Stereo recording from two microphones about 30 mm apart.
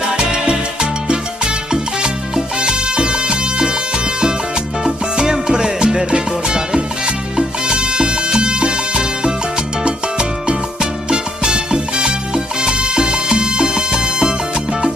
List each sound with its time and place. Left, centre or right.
0.3 s salsa music: right
2.7 s music: right
5.1 s music: right
12.6 s salsa music: right
13.0 s music: right